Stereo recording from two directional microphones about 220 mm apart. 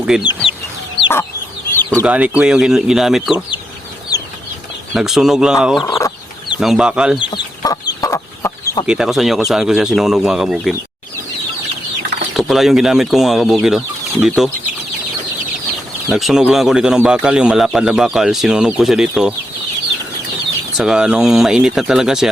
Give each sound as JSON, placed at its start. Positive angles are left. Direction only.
{"t": 0.1, "sound": "speech", "side_deg": -5}
{"t": 1.7, "sound": "chicken", "side_deg": 10}
{"t": 2.0, "sound": "speech", "side_deg": -5}
{"t": 4.9, "sound": "speech", "side_deg": 0}
{"t": 5.8, "sound": "chicken", "side_deg": 15}
{"t": 6.6, "sound": "speech", "side_deg": 0}
{"t": 7.2, "sound": "chicken", "side_deg": 20}
{"t": 8.9, "sound": "speech", "side_deg": 0}
{"t": 12.3, "sound": "speech", "side_deg": 0}
{"t": 16.1, "sound": "speech", "side_deg": 0}
{"t": 20.7, "sound": "speech", "side_deg": -5}